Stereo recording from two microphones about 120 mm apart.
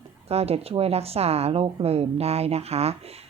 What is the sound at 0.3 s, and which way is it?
A woman's voice, 55° right (ahead or behind).